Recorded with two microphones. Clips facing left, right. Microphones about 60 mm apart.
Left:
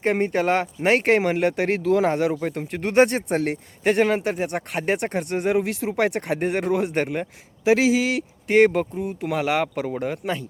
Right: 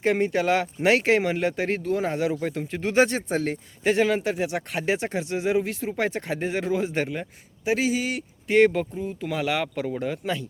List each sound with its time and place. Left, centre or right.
0.0 s speech: left
2.3 s speech: left
7.6 s speech: left
8.4 s speech: left
9.8 s speech: left